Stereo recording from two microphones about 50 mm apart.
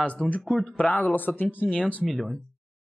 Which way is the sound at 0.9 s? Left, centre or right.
Left.